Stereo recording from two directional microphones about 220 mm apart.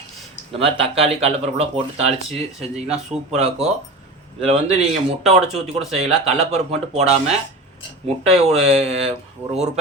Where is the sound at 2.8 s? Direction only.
5° right (ahead or behind).